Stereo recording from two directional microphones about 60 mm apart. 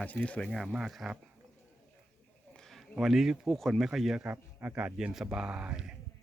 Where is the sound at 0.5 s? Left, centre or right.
Centre.